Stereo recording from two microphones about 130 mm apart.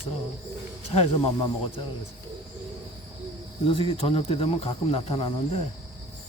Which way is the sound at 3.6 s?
40° left (ahead or behind).